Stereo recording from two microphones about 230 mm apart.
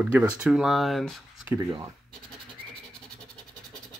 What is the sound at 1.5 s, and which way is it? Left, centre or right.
Speech, centre.